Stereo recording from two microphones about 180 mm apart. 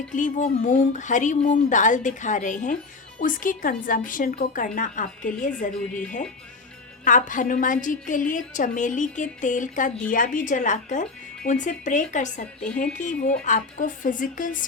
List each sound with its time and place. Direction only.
0.2 s a woman's voice: 45° left (ahead or behind)
7.0 s a woman's voice: 45° left (ahead or behind)